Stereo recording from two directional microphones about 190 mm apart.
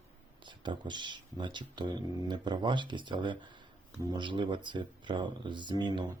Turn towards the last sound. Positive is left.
turn(degrees=-20)  # may be behind; listen again after turning